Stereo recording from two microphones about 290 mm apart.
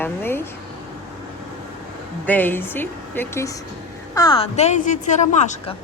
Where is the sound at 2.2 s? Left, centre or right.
Centre; by 5.7 s left.